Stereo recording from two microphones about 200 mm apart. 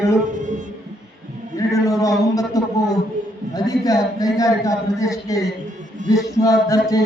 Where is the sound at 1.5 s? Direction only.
15° left (ahead or behind).